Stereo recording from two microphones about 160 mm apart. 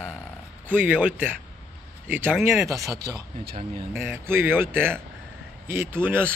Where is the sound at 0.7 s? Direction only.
10° right (ahead or behind).